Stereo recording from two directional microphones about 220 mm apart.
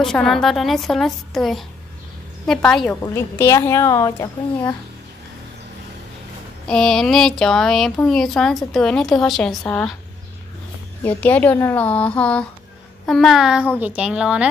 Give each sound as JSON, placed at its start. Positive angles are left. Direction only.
{"t": 0.0, "sound": "a child's voice", "side_deg": 0}
{"t": 6.7, "sound": "speech", "side_deg": 0}
{"t": 11.1, "sound": "a child's voice", "side_deg": 10}